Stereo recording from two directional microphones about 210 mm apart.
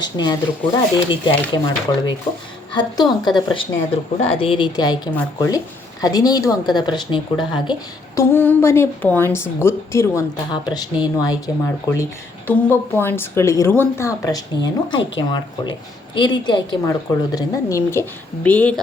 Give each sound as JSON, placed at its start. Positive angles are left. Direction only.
{"t": 0.0, "sound": "a woman's voice", "side_deg": 20}